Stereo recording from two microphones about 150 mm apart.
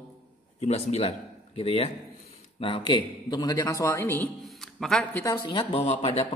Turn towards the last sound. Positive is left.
turn(degrees=40)  # may be behind; listen again after turning